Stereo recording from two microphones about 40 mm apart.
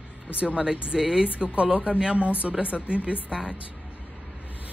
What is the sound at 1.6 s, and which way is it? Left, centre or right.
A woman's voice, right.